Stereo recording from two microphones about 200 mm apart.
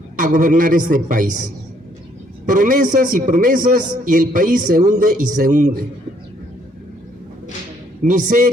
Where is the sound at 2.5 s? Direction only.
40° right (ahead or behind).